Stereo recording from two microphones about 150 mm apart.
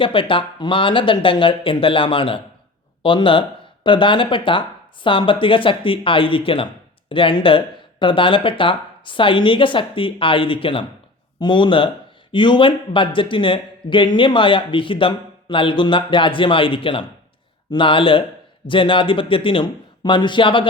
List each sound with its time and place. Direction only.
0.0 s speech: 35° left (ahead or behind)